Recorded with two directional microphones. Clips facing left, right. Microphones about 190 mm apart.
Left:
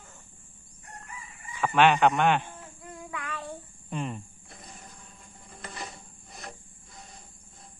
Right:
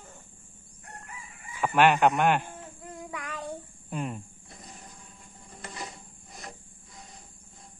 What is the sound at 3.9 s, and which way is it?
Speech, 5° right (ahead or behind).